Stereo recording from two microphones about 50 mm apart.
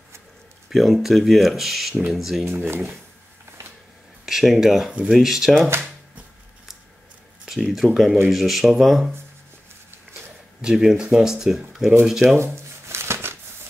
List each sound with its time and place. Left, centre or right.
0.7 s speech: centre
2.4 s speech: right
4.3 s speech: centre
7.5 s speech: centre
10.6 s speech: centre
12.4 s shuffling cards: right